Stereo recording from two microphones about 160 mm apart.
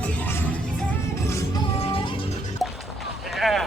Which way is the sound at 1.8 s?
35° left (ahead or behind).